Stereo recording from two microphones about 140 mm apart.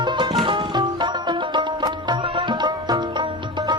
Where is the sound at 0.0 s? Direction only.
35° right (ahead or behind).